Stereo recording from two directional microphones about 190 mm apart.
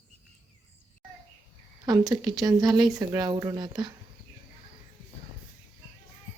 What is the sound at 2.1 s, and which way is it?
Speech, 20° right (ahead or behind).